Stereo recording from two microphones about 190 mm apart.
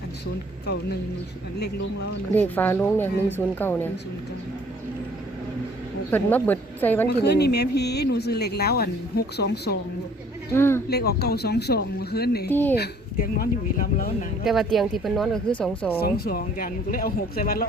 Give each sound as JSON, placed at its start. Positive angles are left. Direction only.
{"t": 2.3, "sound": "speech", "side_deg": 10}
{"t": 6.1, "sound": "speech", "side_deg": 10}
{"t": 7.2, "sound": "speech", "side_deg": 60}
{"t": 10.5, "sound": "speech", "side_deg": 10}
{"t": 10.8, "sound": "speech", "side_deg": 55}
{"t": 12.5, "sound": "speech", "side_deg": 10}
{"t": 12.7, "sound": "speech", "side_deg": 50}
{"t": 14.4, "sound": "speech", "side_deg": 0}
{"t": 16.0, "sound": "speech", "side_deg": 55}